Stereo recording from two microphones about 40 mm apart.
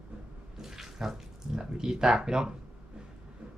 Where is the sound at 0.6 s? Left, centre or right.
Centre.